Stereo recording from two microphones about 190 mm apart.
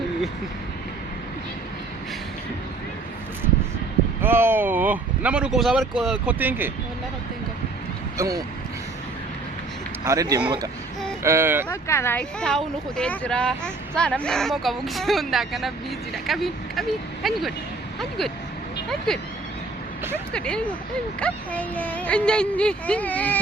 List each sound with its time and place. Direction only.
4.2 s speech: 10° right (ahead or behind)
8.2 s speech: 20° right (ahead or behind)
10.0 s speech: 15° right (ahead or behind)
11.7 s speech: 15° left (ahead or behind)
18.9 s speech: 5° left (ahead or behind)
20.3 s speech: 5° left (ahead or behind)